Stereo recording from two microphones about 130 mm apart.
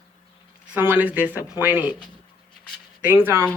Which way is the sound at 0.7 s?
15° right (ahead or behind).